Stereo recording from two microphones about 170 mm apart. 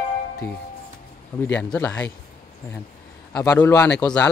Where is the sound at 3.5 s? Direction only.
10° left (ahead or behind).